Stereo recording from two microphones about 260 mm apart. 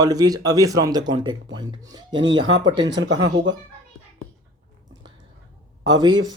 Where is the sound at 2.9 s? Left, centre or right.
Right.